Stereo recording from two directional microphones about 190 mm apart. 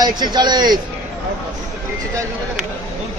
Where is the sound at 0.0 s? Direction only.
20° right (ahead or behind).